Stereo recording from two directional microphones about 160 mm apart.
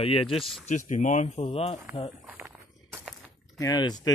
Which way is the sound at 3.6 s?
25° left (ahead or behind).